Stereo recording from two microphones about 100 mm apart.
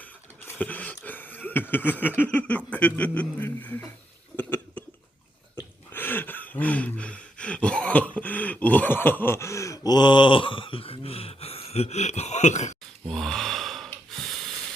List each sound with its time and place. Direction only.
0.0 s cough: 15° left (ahead or behind)
1.7 s speech: 20° left (ahead or behind)
4.4 s cough: 15° left (ahead or behind)
5.9 s a sound: 20° left (ahead or behind); by 12.3 s 90° left
13.1 s gasp: 5° left (ahead or behind)
14.1 s snort: 5° left (ahead or behind)